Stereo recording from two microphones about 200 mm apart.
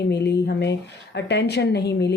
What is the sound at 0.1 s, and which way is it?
A woman's voice, 55° left (ahead or behind).